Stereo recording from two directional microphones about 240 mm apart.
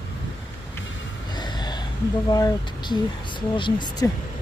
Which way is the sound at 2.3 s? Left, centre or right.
Centre.